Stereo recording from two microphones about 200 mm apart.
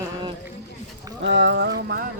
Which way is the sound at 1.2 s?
65° right (ahead or behind).